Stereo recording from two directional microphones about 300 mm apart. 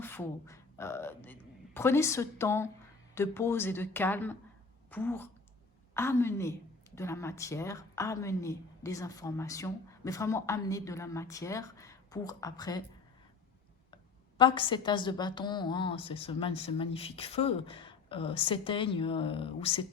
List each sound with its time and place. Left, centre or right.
0.0 s a woman's voice: centre
13.9 s a woman's voice: centre